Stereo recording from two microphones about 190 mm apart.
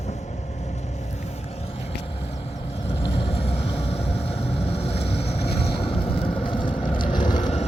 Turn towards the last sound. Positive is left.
turn(degrees=40)  # may be behind; listen again after turning